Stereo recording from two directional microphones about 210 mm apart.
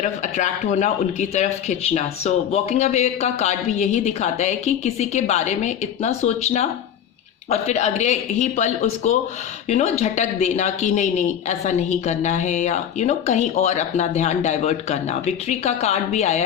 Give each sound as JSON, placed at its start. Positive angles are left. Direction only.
{"t": 0.0, "sound": "speech", "side_deg": 35}